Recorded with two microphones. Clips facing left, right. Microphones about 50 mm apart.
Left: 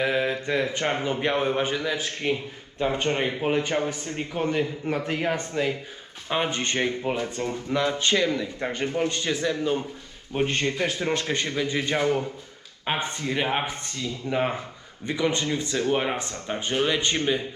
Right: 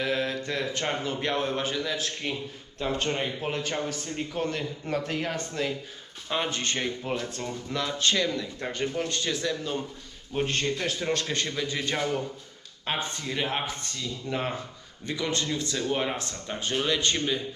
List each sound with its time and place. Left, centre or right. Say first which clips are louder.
0.0 s a man's voice: left 4 dB; centre